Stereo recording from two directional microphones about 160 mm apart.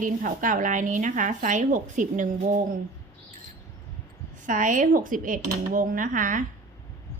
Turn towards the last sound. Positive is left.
turn(degrees=-55)  # may be behind; listen again after turning